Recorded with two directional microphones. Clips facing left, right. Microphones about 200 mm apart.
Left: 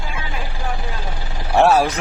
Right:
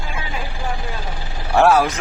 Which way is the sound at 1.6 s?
30° left (ahead or behind).